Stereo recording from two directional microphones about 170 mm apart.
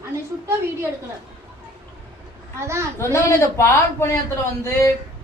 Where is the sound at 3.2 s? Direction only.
15° left (ahead or behind).